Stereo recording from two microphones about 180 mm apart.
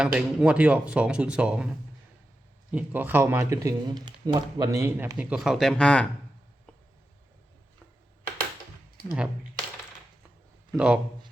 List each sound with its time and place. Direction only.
0.0 s speech: 5° right (ahead or behind)
2.7 s speech: 10° right (ahead or behind)
5.1 s speech: 5° right (ahead or behind)
9.1 s speech: 5° right (ahead or behind)
10.7 s speech: 5° right (ahead or behind)